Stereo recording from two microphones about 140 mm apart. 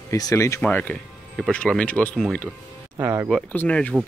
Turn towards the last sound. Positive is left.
turn(degrees=10)  # may be behind; listen again after turning